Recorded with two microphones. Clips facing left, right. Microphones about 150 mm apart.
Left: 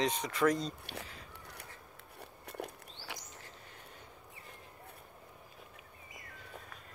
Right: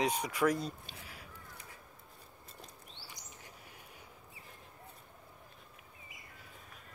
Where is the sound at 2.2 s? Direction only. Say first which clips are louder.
Left 13 dB; 70° left (ahead or behind).